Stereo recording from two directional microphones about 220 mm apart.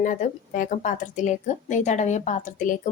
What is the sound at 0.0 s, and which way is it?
A woman's voice, 35° left (ahead or behind).